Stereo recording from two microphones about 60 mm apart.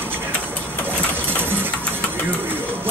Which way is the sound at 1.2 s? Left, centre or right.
Right.